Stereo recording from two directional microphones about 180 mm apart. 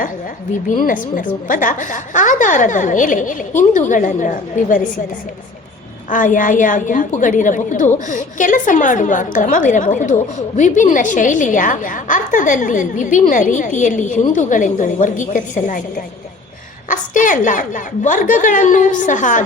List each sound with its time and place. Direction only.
0.8 s a woman's voice: 50° left (ahead or behind)
6.1 s a woman's voice: 45° left (ahead or behind)